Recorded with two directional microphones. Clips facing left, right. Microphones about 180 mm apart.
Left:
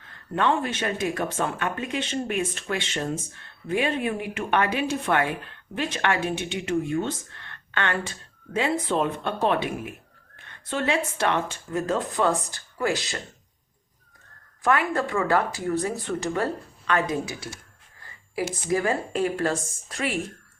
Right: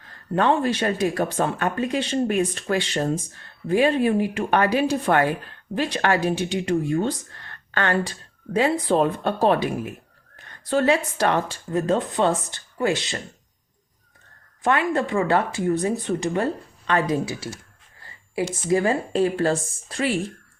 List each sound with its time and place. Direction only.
0.3 s speech: 35° right (ahead or behind)
14.6 s speech: 20° right (ahead or behind)